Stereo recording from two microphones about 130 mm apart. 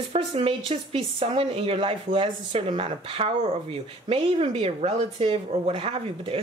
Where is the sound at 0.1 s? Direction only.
45° right (ahead or behind).